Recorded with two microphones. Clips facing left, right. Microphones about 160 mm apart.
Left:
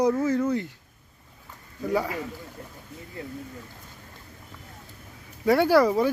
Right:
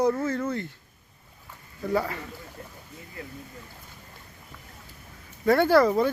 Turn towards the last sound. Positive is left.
turn(degrees=10)  # may be behind; listen again after turning